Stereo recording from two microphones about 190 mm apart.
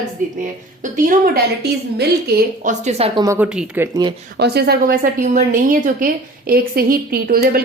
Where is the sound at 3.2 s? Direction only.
15° right (ahead or behind).